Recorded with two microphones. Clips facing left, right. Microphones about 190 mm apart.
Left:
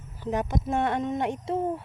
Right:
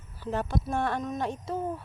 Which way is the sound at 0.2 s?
15° left (ahead or behind).